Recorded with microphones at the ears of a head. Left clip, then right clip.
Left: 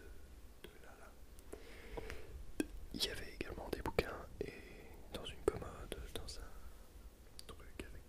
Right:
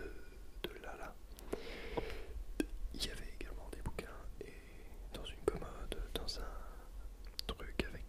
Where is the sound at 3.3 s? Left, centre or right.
Left.